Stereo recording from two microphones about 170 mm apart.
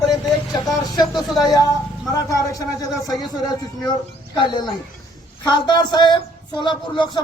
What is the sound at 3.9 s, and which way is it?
Speech, 25° left (ahead or behind).